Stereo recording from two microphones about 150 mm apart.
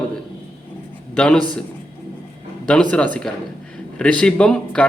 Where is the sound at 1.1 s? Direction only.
5° left (ahead or behind).